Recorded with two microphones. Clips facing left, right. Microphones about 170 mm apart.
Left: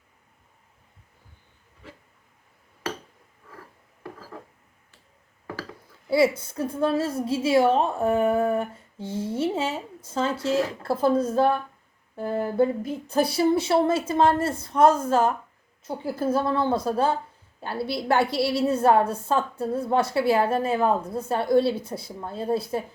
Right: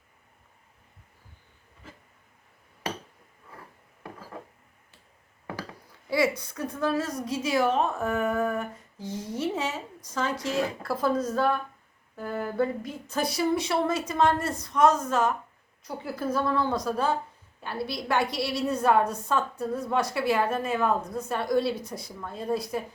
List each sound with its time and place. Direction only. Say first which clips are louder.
6.1 s a woman's voice: left 5 dB; 30° left (ahead or behind)